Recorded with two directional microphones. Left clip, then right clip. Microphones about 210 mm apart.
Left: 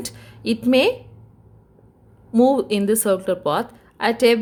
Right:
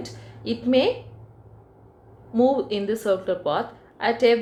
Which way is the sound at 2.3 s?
45° left (ahead or behind).